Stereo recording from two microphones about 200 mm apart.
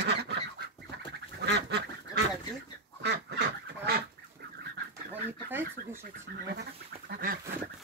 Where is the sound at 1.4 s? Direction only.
60° right (ahead or behind).